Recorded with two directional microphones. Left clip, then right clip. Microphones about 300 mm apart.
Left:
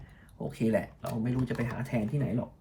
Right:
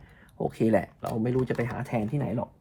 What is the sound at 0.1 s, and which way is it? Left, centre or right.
Speech, right.